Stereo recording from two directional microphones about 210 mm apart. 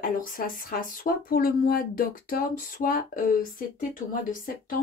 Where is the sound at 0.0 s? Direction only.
40° left (ahead or behind).